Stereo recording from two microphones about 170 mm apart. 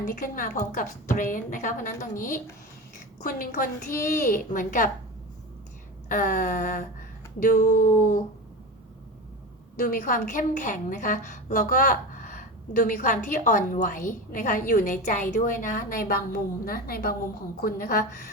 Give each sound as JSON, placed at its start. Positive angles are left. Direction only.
{"t": 0.0, "sound": "a woman's voice", "side_deg": 50}
{"t": 6.1, "sound": "a woman's voice", "side_deg": 50}
{"t": 9.7, "sound": "a woman's voice", "side_deg": 50}